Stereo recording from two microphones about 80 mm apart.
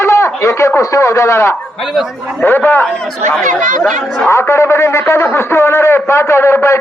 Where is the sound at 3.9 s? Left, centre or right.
Centre.